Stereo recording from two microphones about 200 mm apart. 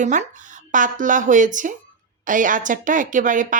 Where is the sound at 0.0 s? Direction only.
40° right (ahead or behind).